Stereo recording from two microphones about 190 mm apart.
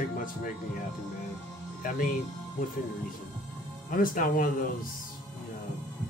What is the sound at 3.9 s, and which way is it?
Speech, 45° left (ahead or behind).